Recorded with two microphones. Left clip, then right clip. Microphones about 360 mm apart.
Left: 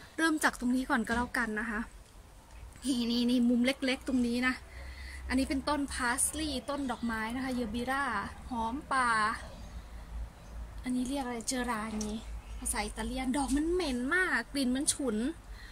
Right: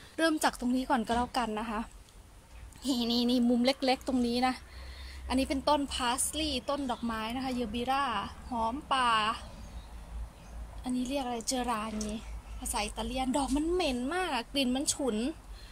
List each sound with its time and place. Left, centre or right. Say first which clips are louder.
0.1 s a woman's voice: right 1 dB; centre
10.8 s a woman's voice: right 1 dB; centre